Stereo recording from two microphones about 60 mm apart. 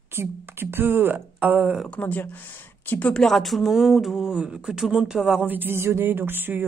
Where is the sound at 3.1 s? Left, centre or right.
Centre.